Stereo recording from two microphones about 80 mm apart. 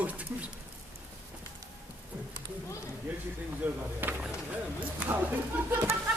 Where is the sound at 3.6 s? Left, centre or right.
Right.